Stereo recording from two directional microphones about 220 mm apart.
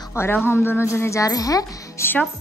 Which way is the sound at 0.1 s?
10° left (ahead or behind).